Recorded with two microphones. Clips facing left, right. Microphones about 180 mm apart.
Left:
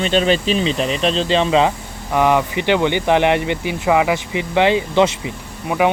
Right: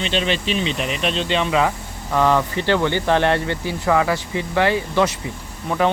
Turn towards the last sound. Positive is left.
turn(degrees=10)  # may be behind; listen again after turning